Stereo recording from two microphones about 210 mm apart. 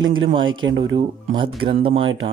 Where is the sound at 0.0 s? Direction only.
65° right (ahead or behind).